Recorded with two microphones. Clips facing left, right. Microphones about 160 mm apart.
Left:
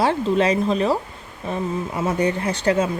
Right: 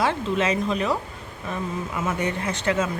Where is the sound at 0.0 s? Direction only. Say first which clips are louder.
Left 4 dB; 35° left (ahead or behind).